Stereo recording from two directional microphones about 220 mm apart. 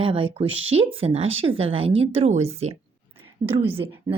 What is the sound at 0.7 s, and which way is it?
A woman's voice, 25° right (ahead or behind).